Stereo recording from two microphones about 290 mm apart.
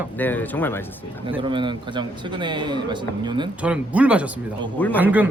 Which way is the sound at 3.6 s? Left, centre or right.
Centre.